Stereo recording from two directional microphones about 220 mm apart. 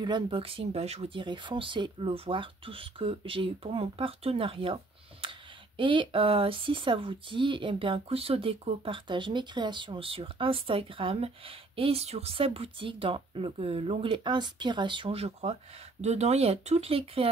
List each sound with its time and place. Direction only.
0.0 s speech: 20° right (ahead or behind)
5.8 s speech: 20° right (ahead or behind)